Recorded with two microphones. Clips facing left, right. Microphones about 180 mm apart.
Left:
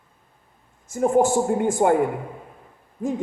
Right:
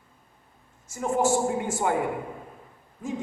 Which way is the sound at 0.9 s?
55° left (ahead or behind).